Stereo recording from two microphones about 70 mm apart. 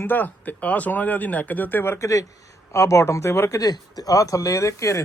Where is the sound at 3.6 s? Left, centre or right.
Left.